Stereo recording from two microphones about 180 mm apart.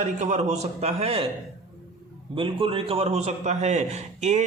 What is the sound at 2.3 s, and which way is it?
A man's voice, 30° right (ahead or behind).